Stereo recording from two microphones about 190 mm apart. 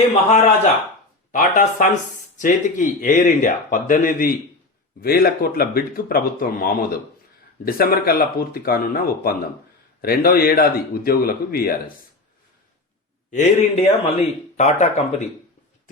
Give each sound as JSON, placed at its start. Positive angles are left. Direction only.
{"t": 0.3, "sound": "speech", "side_deg": 35}
{"t": 13.3, "sound": "speech", "side_deg": 35}